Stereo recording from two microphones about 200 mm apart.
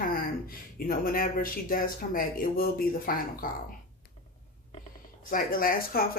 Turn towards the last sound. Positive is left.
turn(degrees=45)  # may be behind; listen again after turning